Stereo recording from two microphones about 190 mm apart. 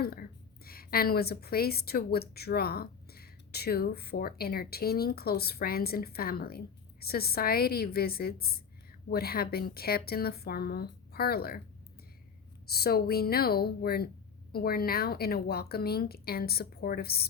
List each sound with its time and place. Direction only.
0.0 s a woman's voice: 55° left (ahead or behind)
12.7 s a woman's voice: 55° left (ahead or behind)